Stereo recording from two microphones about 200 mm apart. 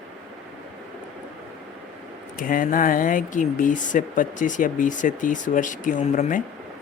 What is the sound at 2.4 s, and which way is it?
Speech, 45° left (ahead or behind).